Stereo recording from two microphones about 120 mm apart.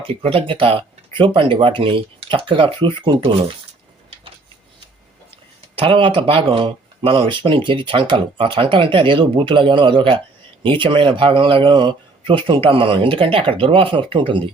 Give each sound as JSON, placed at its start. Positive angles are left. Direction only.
{"t": 0.0, "sound": "speech", "side_deg": -55}
{"t": 5.7, "sound": "speech", "side_deg": -45}